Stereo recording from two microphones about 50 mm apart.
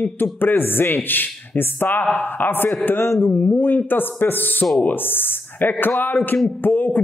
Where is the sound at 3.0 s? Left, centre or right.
Left.